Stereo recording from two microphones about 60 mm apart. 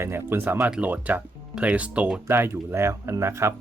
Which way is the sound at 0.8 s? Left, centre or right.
Right.